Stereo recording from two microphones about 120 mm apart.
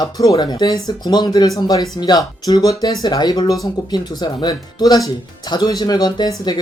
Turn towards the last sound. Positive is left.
turn(degrees=35)  # may be behind; listen again after turning